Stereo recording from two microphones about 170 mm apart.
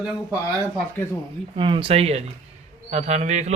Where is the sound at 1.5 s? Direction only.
30° right (ahead or behind).